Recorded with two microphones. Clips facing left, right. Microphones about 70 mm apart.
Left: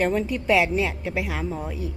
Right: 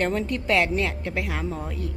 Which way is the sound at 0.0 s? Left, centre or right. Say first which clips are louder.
Left 2 dB; centre.